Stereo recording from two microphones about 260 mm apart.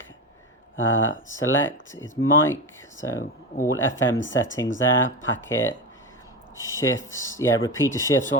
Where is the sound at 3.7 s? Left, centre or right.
Left.